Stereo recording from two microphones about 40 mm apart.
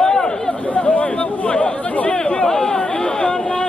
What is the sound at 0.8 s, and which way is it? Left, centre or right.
Chatter, left.